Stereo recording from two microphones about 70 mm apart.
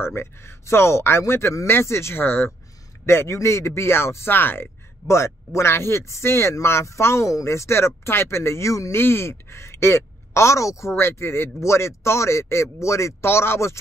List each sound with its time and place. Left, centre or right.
0.0 s speech: left
5.0 s speech: left
8.9 s speech: left